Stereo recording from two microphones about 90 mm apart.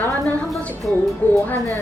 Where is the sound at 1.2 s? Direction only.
20° left (ahead or behind).